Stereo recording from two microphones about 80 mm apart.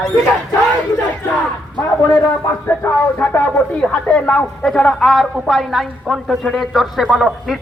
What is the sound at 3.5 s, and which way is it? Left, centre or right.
Speech, centre.